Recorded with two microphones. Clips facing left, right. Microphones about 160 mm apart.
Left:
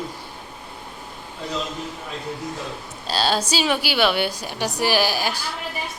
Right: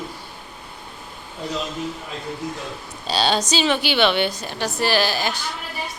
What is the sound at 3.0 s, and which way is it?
A woman's voice, centre (ahead or behind).